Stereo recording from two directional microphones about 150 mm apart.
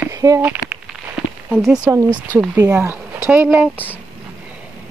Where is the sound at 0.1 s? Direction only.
20° right (ahead or behind).